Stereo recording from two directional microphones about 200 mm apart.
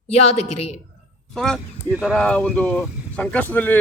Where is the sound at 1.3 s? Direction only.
5° left (ahead or behind).